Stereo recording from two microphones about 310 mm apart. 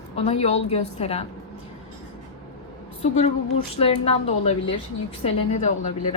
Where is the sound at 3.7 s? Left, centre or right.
Centre.